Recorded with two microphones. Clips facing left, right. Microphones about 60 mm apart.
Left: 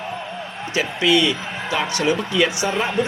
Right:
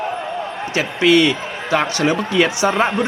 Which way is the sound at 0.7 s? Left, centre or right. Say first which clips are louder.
Right 4 dB; right.